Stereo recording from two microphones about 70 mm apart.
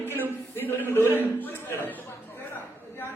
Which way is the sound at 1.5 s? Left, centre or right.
Left.